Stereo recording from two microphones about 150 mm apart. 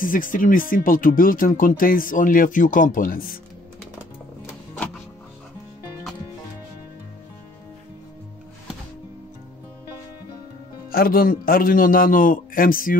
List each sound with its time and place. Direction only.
0.0 s speech: 65° left (ahead or behind)
10.9 s a man's voice: 80° left